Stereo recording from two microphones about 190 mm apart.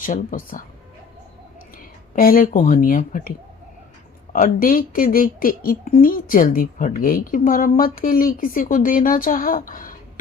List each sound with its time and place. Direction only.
0.0 s speech: 45° left (ahead or behind)
2.1 s speech: 50° left (ahead or behind)